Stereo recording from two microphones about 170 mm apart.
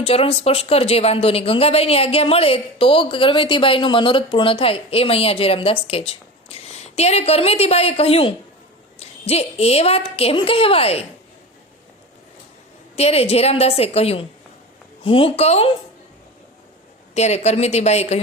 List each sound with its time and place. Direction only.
0.0 s speech: 35° left (ahead or behind)
13.0 s speech: 35° left (ahead or behind)
17.2 s speech: 40° left (ahead or behind)